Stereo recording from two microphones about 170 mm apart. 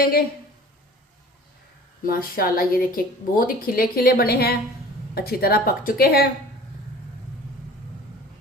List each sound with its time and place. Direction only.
0.0 s a woman's voice: 65° left (ahead or behind)
2.0 s a woman's voice: 60° left (ahead or behind)